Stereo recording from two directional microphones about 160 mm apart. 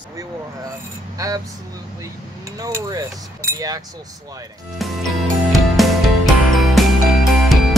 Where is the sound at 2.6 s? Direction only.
20° right (ahead or behind).